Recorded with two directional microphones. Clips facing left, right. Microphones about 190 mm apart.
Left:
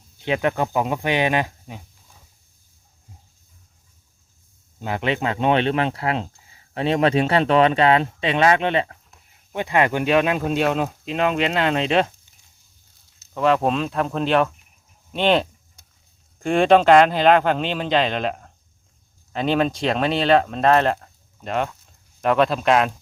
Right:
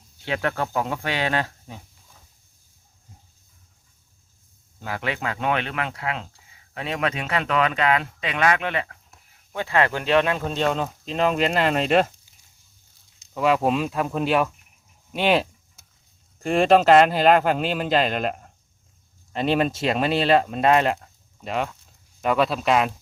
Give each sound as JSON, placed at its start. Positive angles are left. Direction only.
{"t": 0.2, "sound": "speech", "side_deg": 20}
{"t": 4.8, "sound": "speech", "side_deg": 20}
{"t": 13.3, "sound": "speech", "side_deg": -5}
{"t": 15.1, "sound": "a sound", "side_deg": -5}
{"t": 16.4, "sound": "speech", "side_deg": 0}